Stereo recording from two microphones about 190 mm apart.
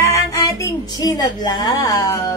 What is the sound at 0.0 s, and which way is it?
Music, 15° left (ahead or behind).